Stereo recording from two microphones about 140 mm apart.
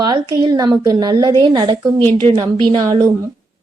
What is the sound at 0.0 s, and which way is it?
A woman's voice, 30° right (ahead or behind).